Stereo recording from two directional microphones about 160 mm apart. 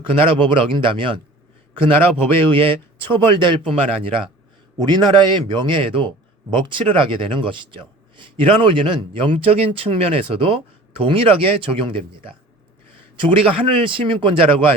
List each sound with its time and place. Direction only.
0.1 s a man's voice: 35° right (ahead or behind)
2.5 s a man's voice: 35° right (ahead or behind)